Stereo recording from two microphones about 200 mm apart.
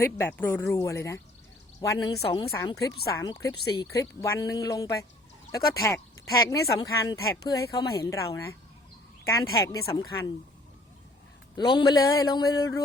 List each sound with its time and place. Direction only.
0.0 s speech: 10° left (ahead or behind)
2.2 s speech: 30° left (ahead or behind)
2.6 s speech: 15° left (ahead or behind)
11.5 s speech: 25° left (ahead or behind)